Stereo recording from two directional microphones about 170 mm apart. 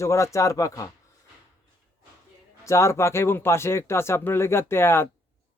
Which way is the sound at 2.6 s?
15° left (ahead or behind).